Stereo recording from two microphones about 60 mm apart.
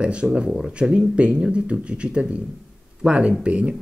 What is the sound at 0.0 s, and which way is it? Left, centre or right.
Speech, centre.